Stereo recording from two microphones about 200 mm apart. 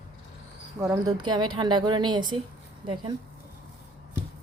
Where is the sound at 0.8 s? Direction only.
15° right (ahead or behind).